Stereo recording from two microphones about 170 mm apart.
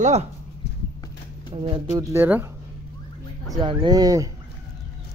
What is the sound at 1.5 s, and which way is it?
Speech, 30° right (ahead or behind).